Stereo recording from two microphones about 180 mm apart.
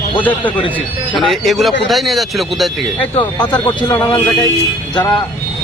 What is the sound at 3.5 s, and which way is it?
Speech, 25° left (ahead or behind).